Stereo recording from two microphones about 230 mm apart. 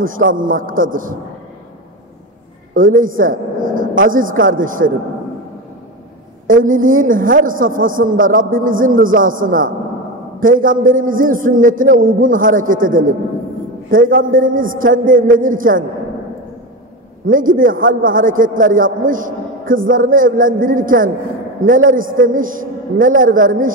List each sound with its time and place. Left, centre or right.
0.0 s a man's voice: right
2.7 s a woman's voice: right
6.4 s a man's voice: right
17.3 s a man's voice: right